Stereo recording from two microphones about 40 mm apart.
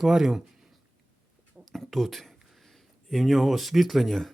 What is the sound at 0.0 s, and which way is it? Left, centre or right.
Speech, centre.